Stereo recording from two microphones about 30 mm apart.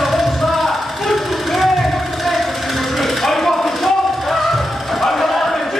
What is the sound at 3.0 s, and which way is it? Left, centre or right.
Music, centre.